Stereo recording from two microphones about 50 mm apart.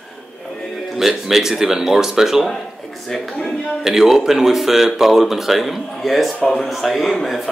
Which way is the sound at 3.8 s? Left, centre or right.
Centre.